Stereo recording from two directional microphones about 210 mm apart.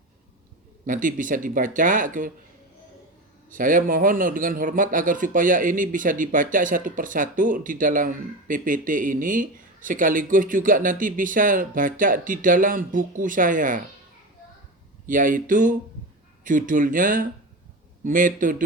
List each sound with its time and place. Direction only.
0.9 s a man's voice: 40° right (ahead or behind)
3.5 s a man's voice: 40° right (ahead or behind)
15.0 s a man's voice: 40° right (ahead or behind)